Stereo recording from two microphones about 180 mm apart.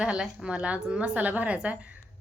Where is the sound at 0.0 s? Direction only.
5° right (ahead or behind).